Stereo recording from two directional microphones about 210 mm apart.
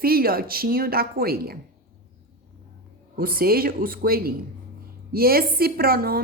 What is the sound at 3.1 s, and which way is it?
A woman's voice, 45° right (ahead or behind).